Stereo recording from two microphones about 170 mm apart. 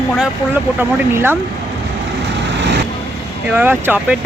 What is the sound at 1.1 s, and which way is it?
Speech, 10° right (ahead or behind).